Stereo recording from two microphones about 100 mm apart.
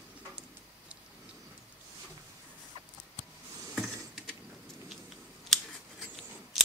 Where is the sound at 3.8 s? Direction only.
5° right (ahead or behind).